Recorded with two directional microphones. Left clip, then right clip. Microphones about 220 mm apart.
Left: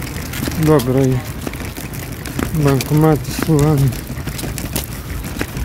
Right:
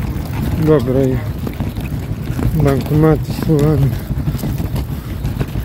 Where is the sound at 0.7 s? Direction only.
25° left (ahead or behind).